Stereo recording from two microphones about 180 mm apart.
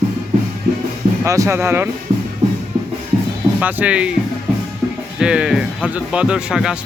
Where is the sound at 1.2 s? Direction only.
15° right (ahead or behind).